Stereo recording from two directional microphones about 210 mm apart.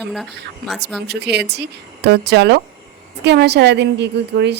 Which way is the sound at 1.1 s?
50° right (ahead or behind).